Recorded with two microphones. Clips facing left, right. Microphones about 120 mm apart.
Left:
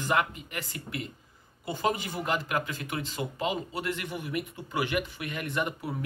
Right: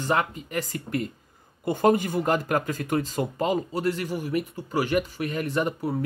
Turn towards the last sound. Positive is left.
turn(degrees=-35)  # may be behind; listen again after turning